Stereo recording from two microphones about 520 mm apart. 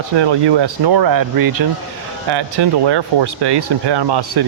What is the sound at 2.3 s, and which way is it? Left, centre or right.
Speech, right.